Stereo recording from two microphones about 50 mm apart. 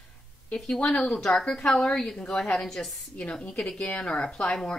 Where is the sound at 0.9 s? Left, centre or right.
Centre.